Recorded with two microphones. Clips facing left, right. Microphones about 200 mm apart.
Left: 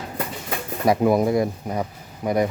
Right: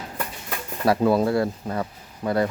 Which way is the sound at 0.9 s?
15° left (ahead or behind).